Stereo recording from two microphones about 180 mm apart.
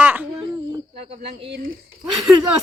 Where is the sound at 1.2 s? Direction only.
65° right (ahead or behind).